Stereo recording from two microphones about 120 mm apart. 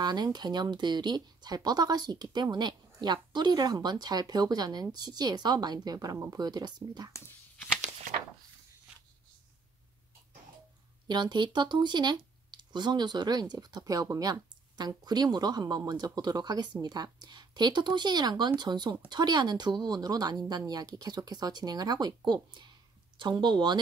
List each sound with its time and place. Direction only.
0.0 s speech: 35° right (ahead or behind)
7.1 s speech: 25° left (ahead or behind)
7.8 s a sound: 80° right
11.1 s speech: 35° right (ahead or behind)